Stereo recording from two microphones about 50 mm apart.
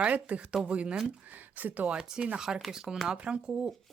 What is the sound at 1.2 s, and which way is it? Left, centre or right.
Speech, right.